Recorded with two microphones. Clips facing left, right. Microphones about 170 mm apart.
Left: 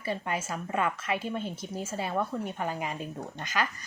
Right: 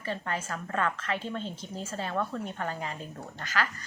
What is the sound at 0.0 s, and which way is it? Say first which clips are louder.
Speech: left 2 dB; 10° left (ahead or behind).